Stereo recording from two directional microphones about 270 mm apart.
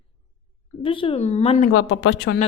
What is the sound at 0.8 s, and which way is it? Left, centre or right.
Speech, centre.